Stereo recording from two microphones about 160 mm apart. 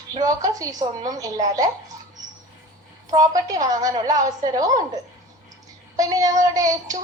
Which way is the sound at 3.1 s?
20° right (ahead or behind).